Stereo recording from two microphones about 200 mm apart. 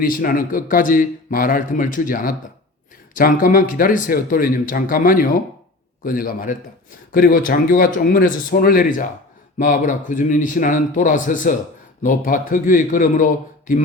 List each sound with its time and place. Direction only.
0.0 s a man's voice: 45° left (ahead or behind)